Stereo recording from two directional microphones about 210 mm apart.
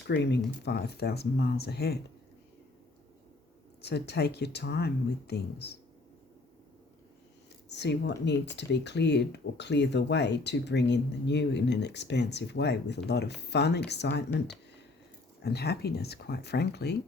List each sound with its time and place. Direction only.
0.1 s speech: 55° left (ahead or behind)
3.8 s speech: 50° left (ahead or behind)
7.7 s speech: 55° left (ahead or behind)
15.4 s speech: 50° left (ahead or behind)